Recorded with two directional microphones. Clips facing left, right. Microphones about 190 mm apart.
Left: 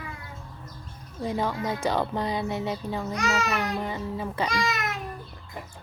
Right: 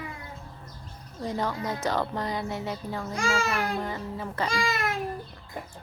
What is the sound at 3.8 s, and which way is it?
Speech, 15° left (ahead or behind).